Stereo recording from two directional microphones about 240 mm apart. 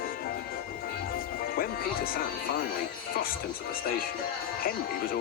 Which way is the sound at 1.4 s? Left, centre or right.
Left.